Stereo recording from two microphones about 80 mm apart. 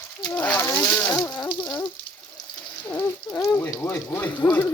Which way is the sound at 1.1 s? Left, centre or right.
Left.